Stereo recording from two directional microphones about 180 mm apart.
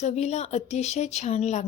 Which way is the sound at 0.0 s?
40° left (ahead or behind).